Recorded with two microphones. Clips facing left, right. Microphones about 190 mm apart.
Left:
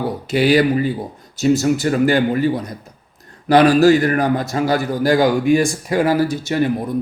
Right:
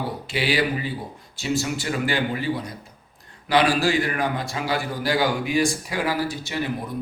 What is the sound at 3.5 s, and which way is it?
A man's voice, 45° left (ahead or behind).